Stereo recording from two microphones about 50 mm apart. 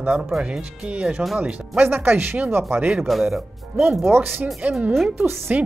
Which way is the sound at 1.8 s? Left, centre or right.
Right.